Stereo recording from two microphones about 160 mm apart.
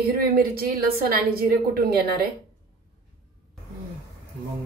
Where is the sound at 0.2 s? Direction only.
70° right (ahead or behind).